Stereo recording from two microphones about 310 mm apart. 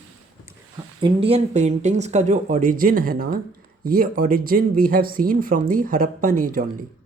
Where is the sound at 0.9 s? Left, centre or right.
Centre.